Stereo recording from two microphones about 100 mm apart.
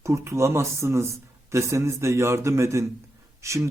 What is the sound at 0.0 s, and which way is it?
Speech, 30° right (ahead or behind).